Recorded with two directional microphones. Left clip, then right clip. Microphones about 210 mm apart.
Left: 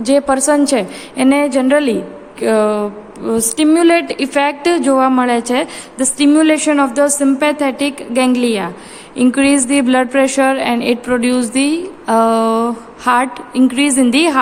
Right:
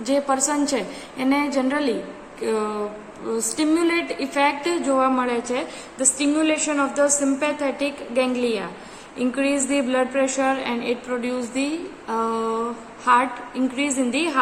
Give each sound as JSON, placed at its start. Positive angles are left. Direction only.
{"t": 0.0, "sound": "a woman's voice", "side_deg": 45}